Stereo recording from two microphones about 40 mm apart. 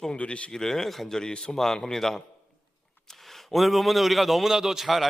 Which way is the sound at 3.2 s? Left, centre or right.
Centre.